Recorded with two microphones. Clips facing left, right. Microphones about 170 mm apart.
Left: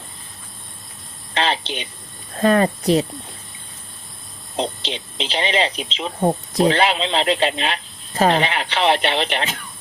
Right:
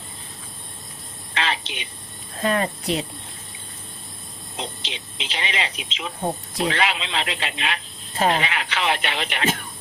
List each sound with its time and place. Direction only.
1.3 s speech: 30° left (ahead or behind)
4.5 s speech: 35° left (ahead or behind)